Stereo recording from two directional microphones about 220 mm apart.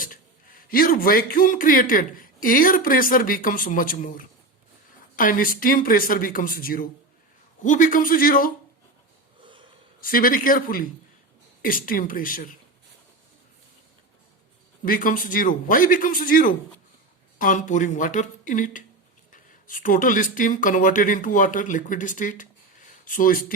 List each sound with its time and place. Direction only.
0.7 s speech: 40° left (ahead or behind)
10.0 s speech: 40° left (ahead or behind)
14.8 s speech: 40° left (ahead or behind)